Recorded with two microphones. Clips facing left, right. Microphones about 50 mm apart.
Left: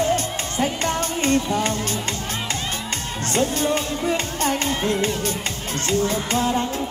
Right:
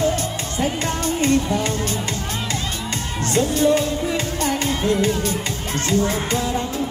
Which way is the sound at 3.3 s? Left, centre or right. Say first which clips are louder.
Right 4 dB; left.